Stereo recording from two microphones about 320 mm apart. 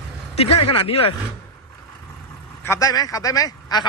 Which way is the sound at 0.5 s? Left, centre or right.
Left.